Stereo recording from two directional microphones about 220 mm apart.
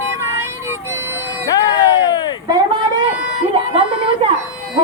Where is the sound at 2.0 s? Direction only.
15° left (ahead or behind).